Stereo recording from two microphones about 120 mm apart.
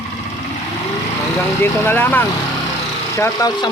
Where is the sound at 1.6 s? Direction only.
20° left (ahead or behind).